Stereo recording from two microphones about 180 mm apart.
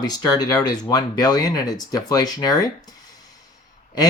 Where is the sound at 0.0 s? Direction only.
20° left (ahead or behind).